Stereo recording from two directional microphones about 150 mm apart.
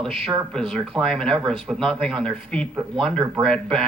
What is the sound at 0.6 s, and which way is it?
Speech, centre (ahead or behind).